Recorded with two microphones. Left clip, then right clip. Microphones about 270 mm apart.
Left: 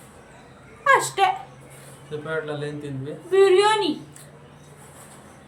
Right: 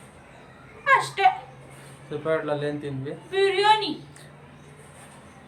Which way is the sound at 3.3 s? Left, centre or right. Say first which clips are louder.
Left 3 dB; centre.